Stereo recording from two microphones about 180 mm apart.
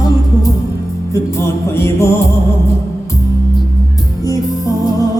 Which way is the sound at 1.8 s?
15° left (ahead or behind).